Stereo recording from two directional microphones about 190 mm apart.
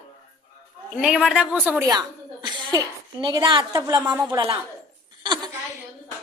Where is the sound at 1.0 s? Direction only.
5° right (ahead or behind).